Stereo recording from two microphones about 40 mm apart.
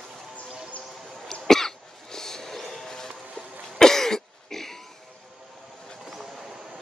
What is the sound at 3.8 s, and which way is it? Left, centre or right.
Cough, centre.